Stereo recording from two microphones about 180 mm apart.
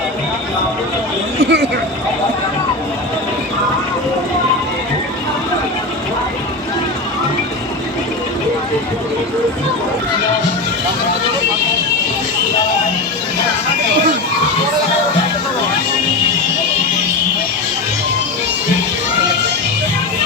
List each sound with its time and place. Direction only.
1.4 s speech: 70° right (ahead or behind)